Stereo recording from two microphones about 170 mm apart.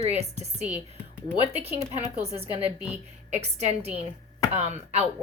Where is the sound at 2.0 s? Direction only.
40° right (ahead or behind).